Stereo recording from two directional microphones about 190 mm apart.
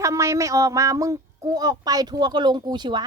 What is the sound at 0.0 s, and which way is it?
Speech, 15° right (ahead or behind).